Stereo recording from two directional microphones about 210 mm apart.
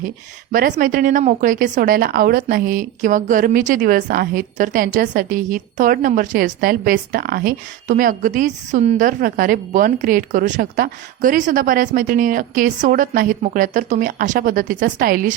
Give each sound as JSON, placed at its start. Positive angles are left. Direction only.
{"t": 0.5, "sound": "speech", "side_deg": -40}